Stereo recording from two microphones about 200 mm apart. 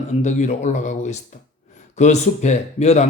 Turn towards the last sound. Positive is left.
turn(degrees=35)  # may be behind; listen again after turning